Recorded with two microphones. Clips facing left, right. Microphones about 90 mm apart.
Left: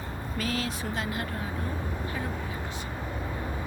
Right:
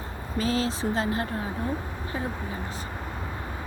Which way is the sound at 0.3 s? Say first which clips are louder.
Right 6 dB; 30° right (ahead or behind).